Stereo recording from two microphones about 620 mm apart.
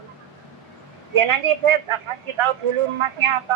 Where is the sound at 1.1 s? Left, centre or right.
Right.